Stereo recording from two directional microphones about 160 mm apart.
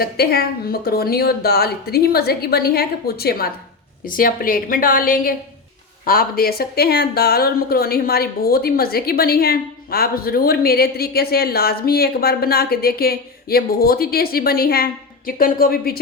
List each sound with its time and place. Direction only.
0.0 s speech: 80° left
4.0 s a woman's voice: 60° left (ahead or behind)